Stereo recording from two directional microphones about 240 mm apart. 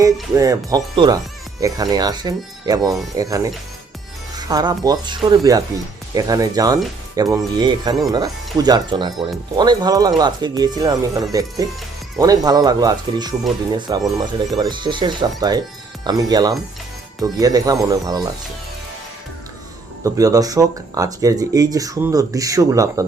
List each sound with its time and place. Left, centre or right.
0.3 s speech: centre
20.1 s speech: centre